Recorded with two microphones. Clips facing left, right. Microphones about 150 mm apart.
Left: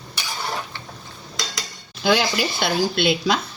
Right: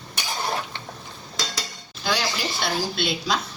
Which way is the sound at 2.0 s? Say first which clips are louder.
Left 6 dB; 65° left (ahead or behind).